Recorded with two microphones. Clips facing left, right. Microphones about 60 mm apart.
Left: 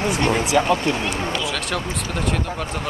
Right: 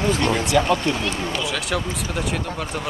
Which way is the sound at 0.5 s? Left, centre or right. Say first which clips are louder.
Even; centre.